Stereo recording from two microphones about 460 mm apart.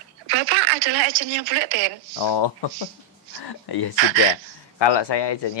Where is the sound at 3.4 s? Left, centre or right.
Left.